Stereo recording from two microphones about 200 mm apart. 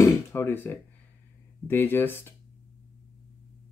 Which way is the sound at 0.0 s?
15° left (ahead or behind).